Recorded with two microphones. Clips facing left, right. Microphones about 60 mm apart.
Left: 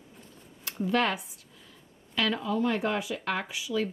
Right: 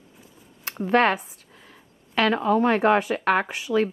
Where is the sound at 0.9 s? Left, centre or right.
Right.